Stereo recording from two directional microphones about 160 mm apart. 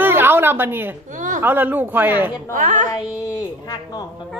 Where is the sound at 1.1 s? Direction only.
50° right (ahead or behind).